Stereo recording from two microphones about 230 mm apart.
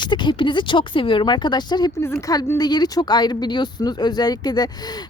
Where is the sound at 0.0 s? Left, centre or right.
Centre.